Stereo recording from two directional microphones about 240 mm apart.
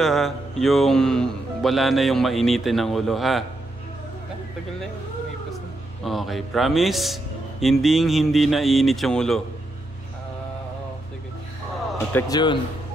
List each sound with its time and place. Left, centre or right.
0.0 s speech: centre
6.0 s speech: centre
12.1 s speech: centre